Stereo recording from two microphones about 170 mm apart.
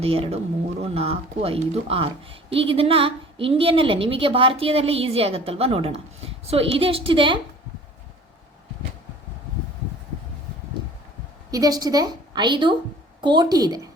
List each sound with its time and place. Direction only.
0.0 s a woman's voice: 35° right (ahead or behind)
11.5 s a woman's voice: 20° right (ahead or behind)